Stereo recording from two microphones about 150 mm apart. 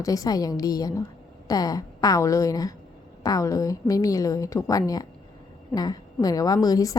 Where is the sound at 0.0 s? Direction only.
25° left (ahead or behind).